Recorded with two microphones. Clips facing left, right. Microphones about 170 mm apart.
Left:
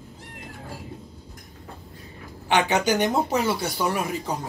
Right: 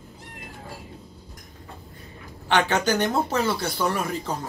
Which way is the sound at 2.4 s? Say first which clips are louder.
Left 1 dB; 15° left (ahead or behind).